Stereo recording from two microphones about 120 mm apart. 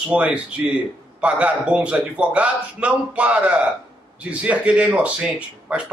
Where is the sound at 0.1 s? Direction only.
10° right (ahead or behind).